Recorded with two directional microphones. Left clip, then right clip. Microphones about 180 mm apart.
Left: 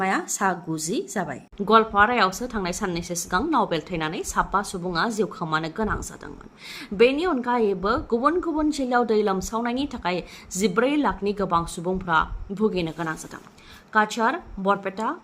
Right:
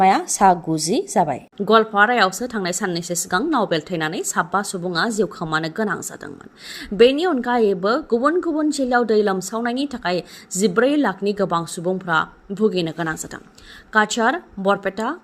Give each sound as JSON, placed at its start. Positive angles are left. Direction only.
{"t": 0.0, "sound": "a woman's voice", "side_deg": -30}
{"t": 1.5, "sound": "a woman's voice", "side_deg": -15}